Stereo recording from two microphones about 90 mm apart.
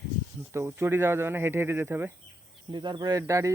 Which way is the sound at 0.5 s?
30° right (ahead or behind).